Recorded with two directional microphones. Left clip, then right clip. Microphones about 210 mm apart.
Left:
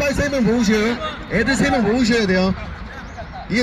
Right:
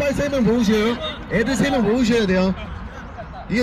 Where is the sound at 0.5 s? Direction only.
40° right (ahead or behind).